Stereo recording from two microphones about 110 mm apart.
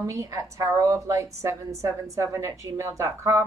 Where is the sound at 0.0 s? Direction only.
30° right (ahead or behind).